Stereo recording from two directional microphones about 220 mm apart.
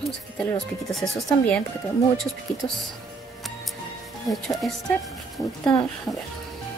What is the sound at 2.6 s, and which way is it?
Speech, 15° left (ahead or behind).